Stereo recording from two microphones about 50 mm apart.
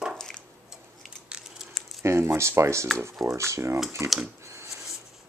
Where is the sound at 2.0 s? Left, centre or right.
Right.